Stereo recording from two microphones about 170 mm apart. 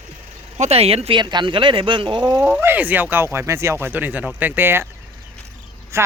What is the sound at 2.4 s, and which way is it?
Speech, 10° right (ahead or behind).